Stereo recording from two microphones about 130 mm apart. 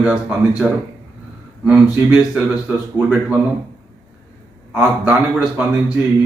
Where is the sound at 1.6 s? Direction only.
15° right (ahead or behind).